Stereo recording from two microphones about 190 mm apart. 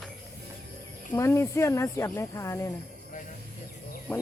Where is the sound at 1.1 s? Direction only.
15° left (ahead or behind).